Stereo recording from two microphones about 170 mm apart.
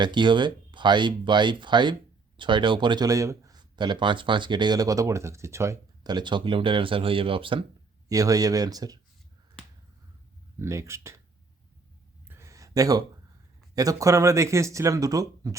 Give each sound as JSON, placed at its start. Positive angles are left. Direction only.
{"t": 0.0, "sound": "speech", "side_deg": -25}
{"t": 8.1, "sound": "speech", "side_deg": -20}
{"t": 10.6, "sound": "speech", "side_deg": -15}
{"t": 12.3, "sound": "a sound", "side_deg": -15}
{"t": 13.7, "sound": "speech", "side_deg": -20}